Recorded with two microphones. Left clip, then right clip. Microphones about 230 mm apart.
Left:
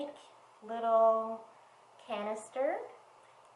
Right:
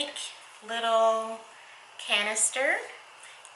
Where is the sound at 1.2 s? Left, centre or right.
Centre.